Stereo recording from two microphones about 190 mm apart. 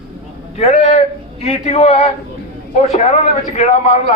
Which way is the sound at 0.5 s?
35° left (ahead or behind).